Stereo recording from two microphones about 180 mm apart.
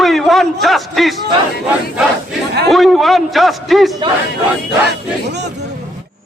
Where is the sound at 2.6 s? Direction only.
Centre (ahead or behind).